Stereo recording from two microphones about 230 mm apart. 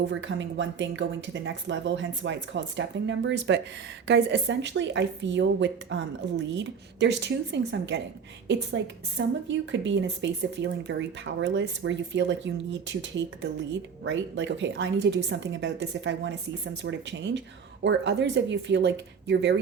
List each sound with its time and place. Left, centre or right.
0.0 s speech: right